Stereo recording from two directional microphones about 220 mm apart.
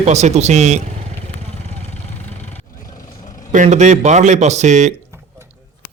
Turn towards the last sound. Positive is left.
turn(degrees=-30)  # may be behind; listen again after turning